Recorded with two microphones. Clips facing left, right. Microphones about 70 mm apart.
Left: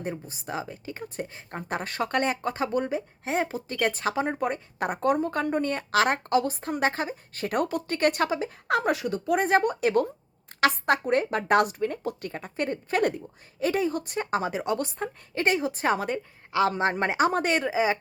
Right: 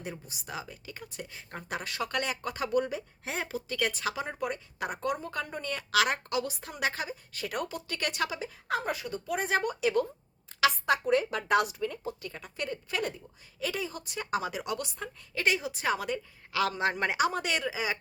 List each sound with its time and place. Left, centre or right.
0.0 s speech: left
8.6 s speech: left